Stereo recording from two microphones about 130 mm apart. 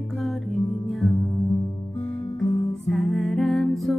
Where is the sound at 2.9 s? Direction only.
Centre (ahead or behind).